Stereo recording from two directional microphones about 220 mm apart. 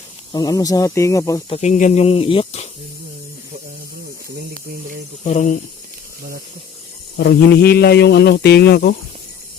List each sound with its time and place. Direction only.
0.3 s speech: 15° left (ahead or behind)
1.5 s speech: 30° left (ahead or behind)
5.2 s speech: 35° left (ahead or behind)
7.2 s speech: 45° left (ahead or behind)